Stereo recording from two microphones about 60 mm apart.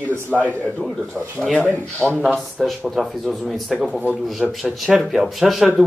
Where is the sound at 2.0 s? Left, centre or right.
Centre.